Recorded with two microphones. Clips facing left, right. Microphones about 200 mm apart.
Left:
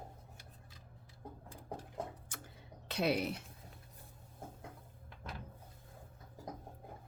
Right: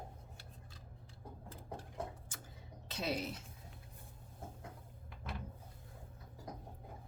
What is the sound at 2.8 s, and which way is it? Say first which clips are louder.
Speech: left 5 dB; 65° left (ahead or behind).